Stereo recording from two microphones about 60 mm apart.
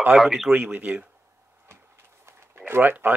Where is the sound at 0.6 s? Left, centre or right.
Right.